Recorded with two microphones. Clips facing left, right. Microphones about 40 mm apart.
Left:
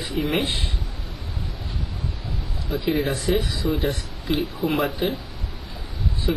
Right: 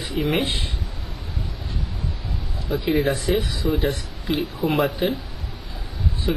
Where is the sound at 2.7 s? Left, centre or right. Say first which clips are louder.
Right 2 dB; centre.